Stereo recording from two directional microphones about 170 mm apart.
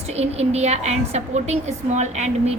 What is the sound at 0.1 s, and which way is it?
A woman's voice, 40° right (ahead or behind).